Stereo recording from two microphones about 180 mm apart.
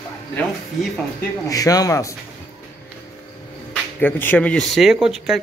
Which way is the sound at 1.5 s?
20° left (ahead or behind).